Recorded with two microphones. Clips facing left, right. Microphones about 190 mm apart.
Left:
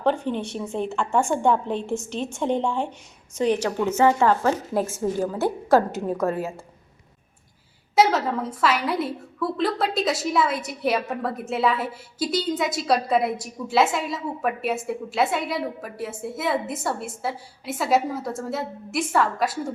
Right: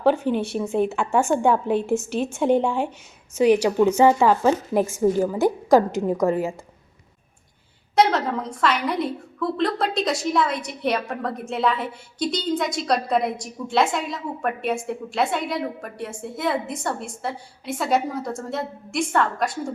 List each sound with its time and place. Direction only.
0.0 s a woman's voice: 5° right (ahead or behind)
7.9 s a woman's voice: 5° left (ahead or behind)